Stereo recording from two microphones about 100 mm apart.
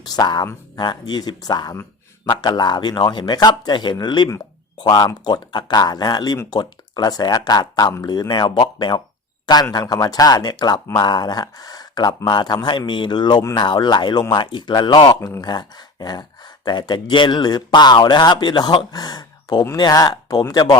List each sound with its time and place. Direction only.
0.0 s speech: 40° left (ahead or behind)
9.7 s speech: 40° left (ahead or behind)